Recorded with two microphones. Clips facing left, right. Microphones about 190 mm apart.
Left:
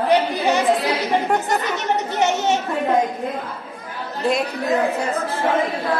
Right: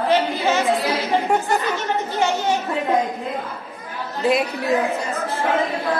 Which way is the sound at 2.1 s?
20° left (ahead or behind).